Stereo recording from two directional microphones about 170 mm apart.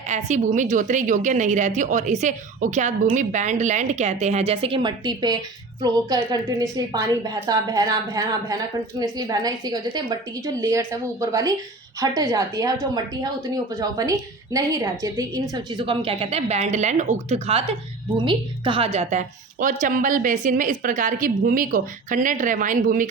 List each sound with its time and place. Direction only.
0.3 s a woman's voice: 45° right (ahead or behind)